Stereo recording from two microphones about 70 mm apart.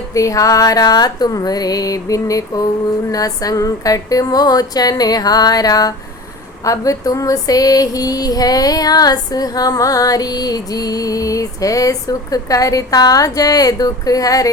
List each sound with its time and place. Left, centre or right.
0.1 s female singing: left